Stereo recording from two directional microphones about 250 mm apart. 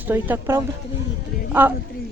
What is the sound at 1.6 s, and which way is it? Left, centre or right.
Speech, centre.